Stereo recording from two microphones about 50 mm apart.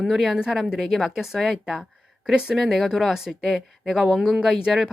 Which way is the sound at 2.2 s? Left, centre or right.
Centre.